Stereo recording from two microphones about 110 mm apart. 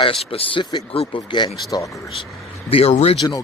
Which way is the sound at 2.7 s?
60° left (ahead or behind).